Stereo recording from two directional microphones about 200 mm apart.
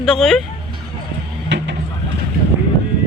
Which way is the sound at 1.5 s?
60° right (ahead or behind).